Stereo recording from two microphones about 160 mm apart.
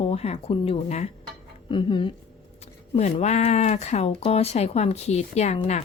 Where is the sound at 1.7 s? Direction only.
30° left (ahead or behind).